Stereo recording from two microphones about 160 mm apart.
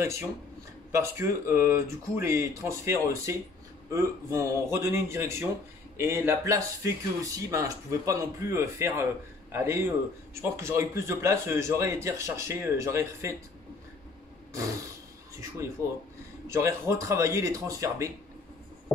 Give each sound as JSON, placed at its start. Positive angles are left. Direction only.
{"t": 0.0, "sound": "a man's voice", "side_deg": -15}
{"t": 16.4, "sound": "speech", "side_deg": -15}